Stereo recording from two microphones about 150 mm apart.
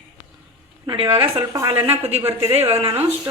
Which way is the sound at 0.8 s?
35° right (ahead or behind).